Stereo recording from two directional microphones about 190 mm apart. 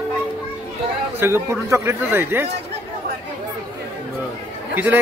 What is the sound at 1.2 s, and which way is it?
A man's voice, 15° right (ahead or behind).